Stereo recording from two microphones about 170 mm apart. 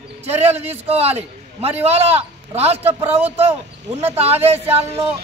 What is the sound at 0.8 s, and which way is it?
A man's voice, 35° right (ahead or behind).